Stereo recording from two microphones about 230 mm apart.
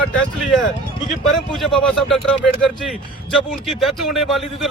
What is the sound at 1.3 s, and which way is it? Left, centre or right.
Speech, centre.